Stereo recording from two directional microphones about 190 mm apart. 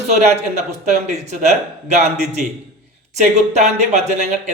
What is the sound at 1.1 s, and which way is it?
Speech, 35° right (ahead or behind).